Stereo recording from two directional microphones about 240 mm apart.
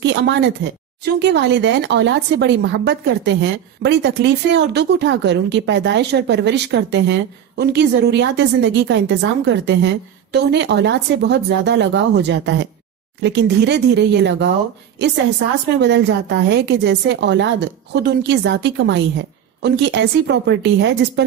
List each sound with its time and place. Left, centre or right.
0.0 s speech: right